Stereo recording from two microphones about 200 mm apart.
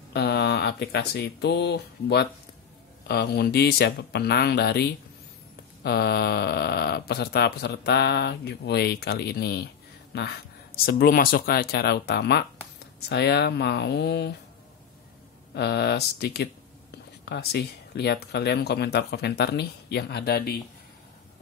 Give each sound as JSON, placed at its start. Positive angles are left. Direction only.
{"t": 0.1, "sound": "speech", "side_deg": 55}
{"t": 15.5, "sound": "speech", "side_deg": 55}